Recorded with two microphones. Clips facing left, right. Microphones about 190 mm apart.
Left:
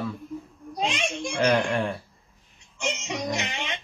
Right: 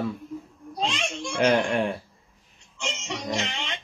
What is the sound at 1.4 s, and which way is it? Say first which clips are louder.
Speech: right 1 dB; 20° right (ahead or behind).